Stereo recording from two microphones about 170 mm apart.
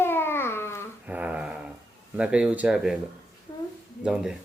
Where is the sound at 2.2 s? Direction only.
5° right (ahead or behind).